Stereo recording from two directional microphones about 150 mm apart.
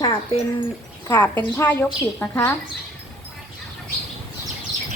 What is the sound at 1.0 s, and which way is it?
A woman's voice, 15° left (ahead or behind).